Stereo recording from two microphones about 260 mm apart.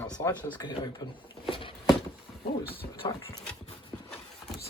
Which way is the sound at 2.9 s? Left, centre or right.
Centre.